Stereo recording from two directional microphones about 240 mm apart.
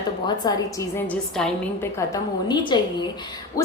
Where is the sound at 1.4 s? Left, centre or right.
Centre.